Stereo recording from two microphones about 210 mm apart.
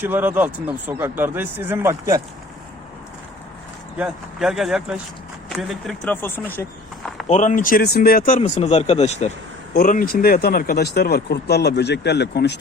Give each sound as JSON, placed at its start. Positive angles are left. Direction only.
{"t": 0.0, "sound": "speech", "side_deg": -10}
{"t": 3.9, "sound": "speech", "side_deg": -5}
{"t": 7.3, "sound": "speech", "side_deg": 35}
{"t": 9.7, "sound": "speech", "side_deg": 40}